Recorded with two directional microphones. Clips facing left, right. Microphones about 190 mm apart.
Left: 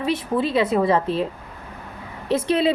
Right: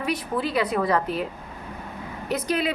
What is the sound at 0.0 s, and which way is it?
A woman's voice, 25° left (ahead or behind).